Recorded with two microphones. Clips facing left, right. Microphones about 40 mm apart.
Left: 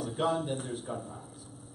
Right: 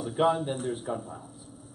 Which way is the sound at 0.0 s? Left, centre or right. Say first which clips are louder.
Right 5 dB; centre.